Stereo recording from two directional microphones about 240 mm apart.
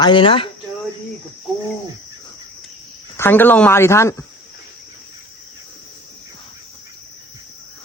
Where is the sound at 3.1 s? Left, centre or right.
Centre.